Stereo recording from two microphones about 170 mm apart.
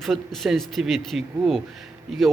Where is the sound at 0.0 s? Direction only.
Centre (ahead or behind).